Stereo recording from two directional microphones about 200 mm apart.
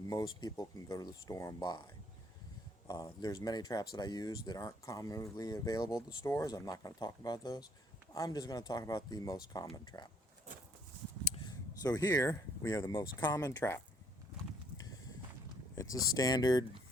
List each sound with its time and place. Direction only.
0.1 s speech: 20° left (ahead or behind)
2.8 s speech: 20° left (ahead or behind)
11.3 s speech: 20° left (ahead or behind)
15.7 s speech: 15° left (ahead or behind)